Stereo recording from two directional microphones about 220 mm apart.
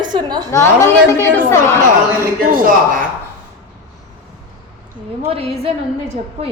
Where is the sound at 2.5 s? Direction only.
40° right (ahead or behind).